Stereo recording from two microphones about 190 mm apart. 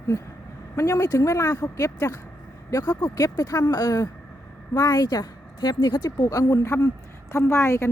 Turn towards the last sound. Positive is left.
turn(degrees=15)  # may be behind; listen again after turning